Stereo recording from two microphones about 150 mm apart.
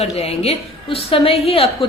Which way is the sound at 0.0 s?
45° left (ahead or behind).